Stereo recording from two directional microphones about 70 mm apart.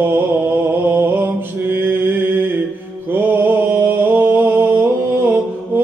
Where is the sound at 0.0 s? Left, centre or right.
Right.